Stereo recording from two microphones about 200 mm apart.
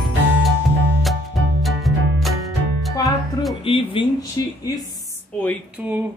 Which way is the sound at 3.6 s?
25° left (ahead or behind).